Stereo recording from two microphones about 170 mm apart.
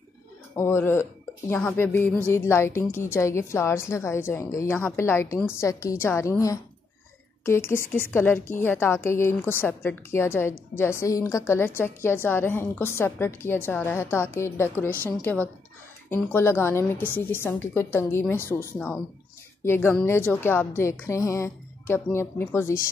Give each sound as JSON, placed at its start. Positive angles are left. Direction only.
{"t": 0.6, "sound": "a woman's voice", "side_deg": 15}